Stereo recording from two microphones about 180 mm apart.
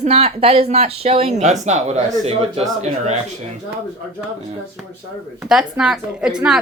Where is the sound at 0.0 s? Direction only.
35° right (ahead or behind).